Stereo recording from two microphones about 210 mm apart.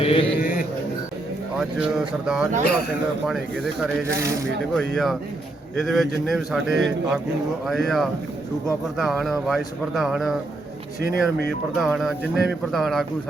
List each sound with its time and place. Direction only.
0.0 s speech: 25° left (ahead or behind)
0.3 s a sound: 45° left (ahead or behind)
1.5 s a man's voice: 5° right (ahead or behind)
4.8 s a man's voice: centre (ahead or behind)
11.1 s speech: 50° left (ahead or behind)
11.8 s a man's voice: centre (ahead or behind)